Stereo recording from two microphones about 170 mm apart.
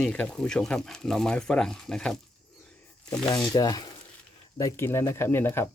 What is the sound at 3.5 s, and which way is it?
Speech, 25° left (ahead or behind).